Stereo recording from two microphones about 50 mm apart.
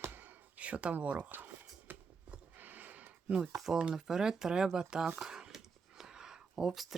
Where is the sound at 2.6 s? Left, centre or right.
Right.